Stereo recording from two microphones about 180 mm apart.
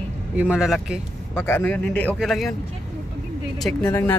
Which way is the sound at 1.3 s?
10° left (ahead or behind).